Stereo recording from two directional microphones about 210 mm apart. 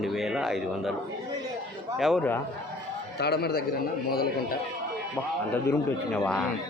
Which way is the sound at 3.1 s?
50° left (ahead or behind).